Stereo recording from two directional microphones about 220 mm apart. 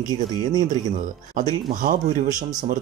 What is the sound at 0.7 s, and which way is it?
Speech, 35° right (ahead or behind).